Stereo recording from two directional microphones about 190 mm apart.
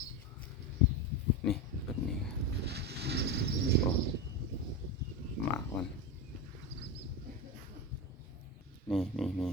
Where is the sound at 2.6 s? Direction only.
60° right (ahead or behind).